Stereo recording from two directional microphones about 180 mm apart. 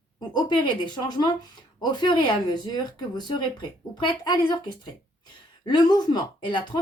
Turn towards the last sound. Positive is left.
turn(degrees=25)  # may be behind; listen again after turning